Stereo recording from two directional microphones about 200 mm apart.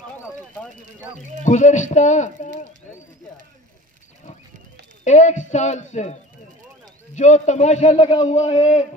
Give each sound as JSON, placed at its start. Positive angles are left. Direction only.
{"t": 1.4, "sound": "a man's voice", "side_deg": 35}
{"t": 5.0, "sound": "a man's voice", "side_deg": 35}
{"t": 7.2, "sound": "a man's voice", "side_deg": 35}